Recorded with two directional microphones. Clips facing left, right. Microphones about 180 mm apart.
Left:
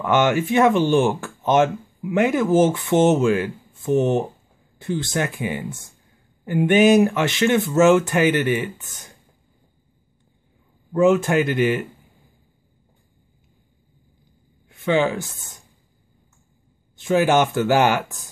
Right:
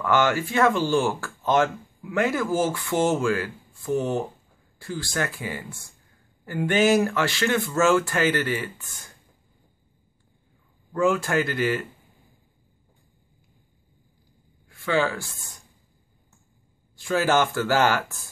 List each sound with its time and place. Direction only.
0.0 s speech: 20° left (ahead or behind)
10.9 s speech: 20° left (ahead or behind)
14.7 s speech: 20° left (ahead or behind)
16.9 s speech: 20° left (ahead or behind)